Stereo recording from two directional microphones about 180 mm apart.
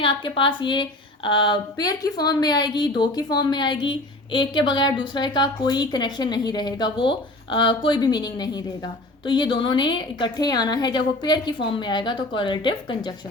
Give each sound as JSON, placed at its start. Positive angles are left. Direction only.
{"t": 0.0, "sound": "a woman's voice", "side_deg": 30}